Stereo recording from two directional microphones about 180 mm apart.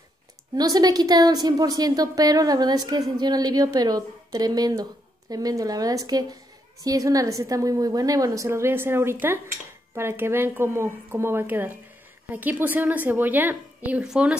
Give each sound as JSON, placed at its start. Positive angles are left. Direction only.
{"t": 0.6, "sound": "a woman's voice", "side_deg": -20}